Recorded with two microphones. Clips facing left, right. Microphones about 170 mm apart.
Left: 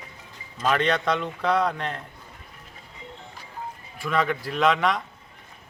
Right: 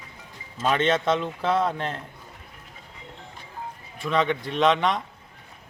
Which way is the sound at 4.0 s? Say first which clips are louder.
Right 1 dB; 25° right (ahead or behind).